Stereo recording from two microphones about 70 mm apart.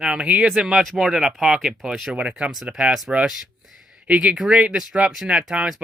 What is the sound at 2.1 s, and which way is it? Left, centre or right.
Speech, centre.